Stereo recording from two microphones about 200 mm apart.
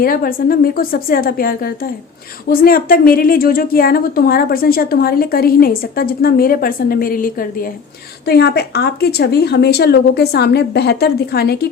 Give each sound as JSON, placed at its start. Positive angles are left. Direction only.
{"t": 0.0, "sound": "a woman's voice", "side_deg": 45}